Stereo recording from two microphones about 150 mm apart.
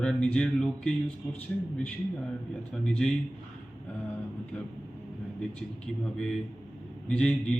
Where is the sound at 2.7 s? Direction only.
5° left (ahead or behind).